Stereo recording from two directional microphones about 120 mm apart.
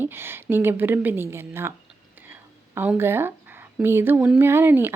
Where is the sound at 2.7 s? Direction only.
20° right (ahead or behind).